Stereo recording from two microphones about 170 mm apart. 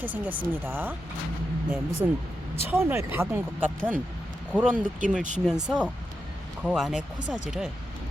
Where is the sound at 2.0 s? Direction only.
20° right (ahead or behind).